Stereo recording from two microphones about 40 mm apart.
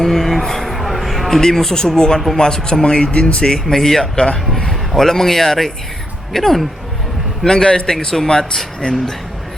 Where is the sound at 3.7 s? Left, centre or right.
Centre.